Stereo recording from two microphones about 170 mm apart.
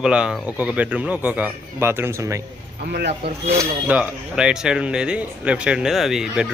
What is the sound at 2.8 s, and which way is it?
Speech, 70° right (ahead or behind).